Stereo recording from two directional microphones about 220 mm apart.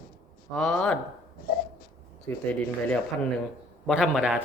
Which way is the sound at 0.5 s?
5° left (ahead or behind).